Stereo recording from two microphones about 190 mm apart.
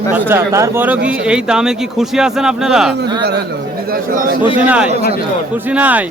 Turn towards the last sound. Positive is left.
turn(degrees=-10)  # may be behind; listen again after turning